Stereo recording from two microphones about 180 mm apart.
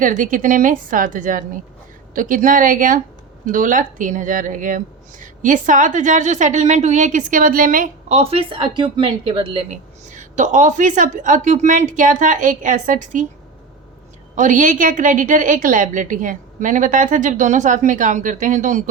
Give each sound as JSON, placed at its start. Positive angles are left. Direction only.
{"t": 0.0, "sound": "speech", "side_deg": -50}
{"t": 8.2, "sound": "speech", "side_deg": -30}
{"t": 14.3, "sound": "speech", "side_deg": -45}